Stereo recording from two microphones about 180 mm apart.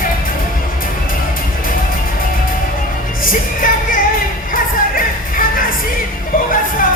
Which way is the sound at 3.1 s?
50° left (ahead or behind).